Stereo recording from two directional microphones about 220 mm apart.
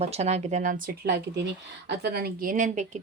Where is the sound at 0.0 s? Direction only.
30° right (ahead or behind).